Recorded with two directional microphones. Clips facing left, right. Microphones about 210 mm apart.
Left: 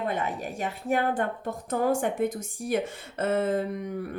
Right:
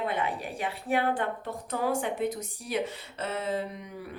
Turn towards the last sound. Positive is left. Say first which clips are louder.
# left 6 dB
turn(degrees=50)  # may be behind; listen again after turning